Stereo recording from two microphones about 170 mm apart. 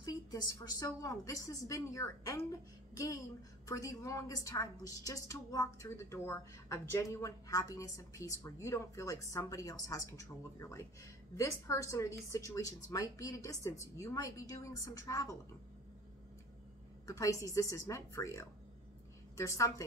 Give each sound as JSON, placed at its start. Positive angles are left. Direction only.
{"t": 0.0, "sound": "a sound", "side_deg": 25}
{"t": 0.7, "sound": "a woman's voice", "side_deg": 20}
{"t": 2.9, "sound": "music", "side_deg": 20}
{"t": 3.6, "sound": "a woman's voice", "side_deg": 20}
{"t": 17.0, "sound": "a woman's voice", "side_deg": 20}